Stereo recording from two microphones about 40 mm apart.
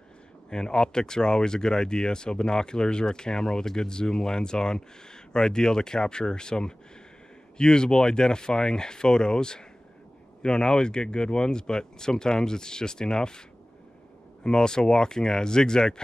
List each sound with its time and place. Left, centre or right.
0.5 s speech: centre
14.4 s speech: centre